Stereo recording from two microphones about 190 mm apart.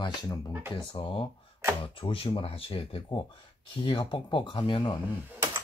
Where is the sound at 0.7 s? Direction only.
25° left (ahead or behind).